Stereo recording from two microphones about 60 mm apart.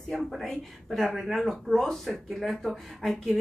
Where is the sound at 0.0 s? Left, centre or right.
Centre.